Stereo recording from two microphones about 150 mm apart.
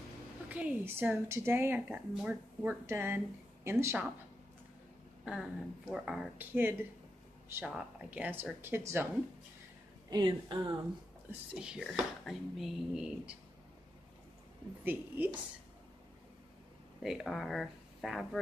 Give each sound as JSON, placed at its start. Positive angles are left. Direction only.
{"t": 0.5, "sound": "a woman's voice", "side_deg": -10}
{"t": 5.2, "sound": "a woman's voice", "side_deg": -5}
{"t": 10.0, "sound": "a woman's voice", "side_deg": -30}
{"t": 11.5, "sound": "speech", "side_deg": -5}
{"t": 14.9, "sound": "a woman's voice", "side_deg": -10}
{"t": 17.0, "sound": "speech", "side_deg": 0}